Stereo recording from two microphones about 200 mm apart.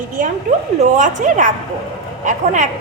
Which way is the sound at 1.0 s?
40° right (ahead or behind).